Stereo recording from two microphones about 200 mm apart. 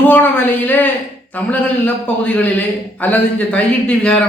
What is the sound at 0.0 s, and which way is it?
A man's voice, 10° left (ahead or behind).